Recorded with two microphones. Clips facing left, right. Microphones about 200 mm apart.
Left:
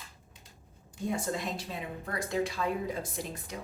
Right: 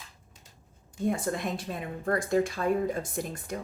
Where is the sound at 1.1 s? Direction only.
55° right (ahead or behind).